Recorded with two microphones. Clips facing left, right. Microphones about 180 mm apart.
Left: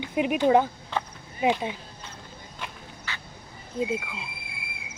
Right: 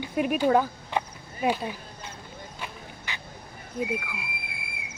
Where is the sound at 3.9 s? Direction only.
25° left (ahead or behind).